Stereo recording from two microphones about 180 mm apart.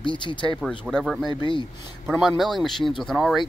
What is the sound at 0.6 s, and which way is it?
Speech, centre (ahead or behind).